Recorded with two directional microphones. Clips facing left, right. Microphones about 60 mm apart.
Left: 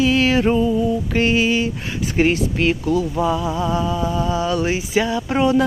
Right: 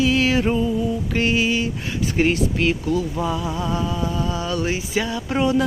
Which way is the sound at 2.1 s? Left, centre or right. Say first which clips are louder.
Left 2 dB; left.